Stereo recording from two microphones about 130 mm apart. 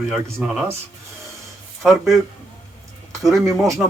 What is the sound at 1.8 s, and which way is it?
Speech, centre (ahead or behind).